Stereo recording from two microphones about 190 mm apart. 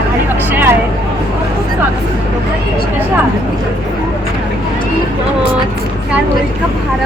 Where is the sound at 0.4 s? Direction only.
10° right (ahead or behind).